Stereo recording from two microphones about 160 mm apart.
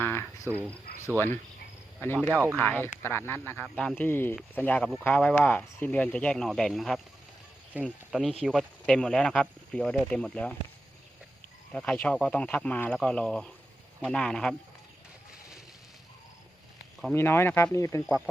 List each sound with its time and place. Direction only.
0.0 s cricket: 15° left (ahead or behind)
0.4 s speech: 15° right (ahead or behind)
2.3 s speech: 10° right (ahead or behind)
2.6 s speech: 10° left (ahead or behind)
11.7 s speech: 10° left (ahead or behind)
17.2 s speech: 15° left (ahead or behind)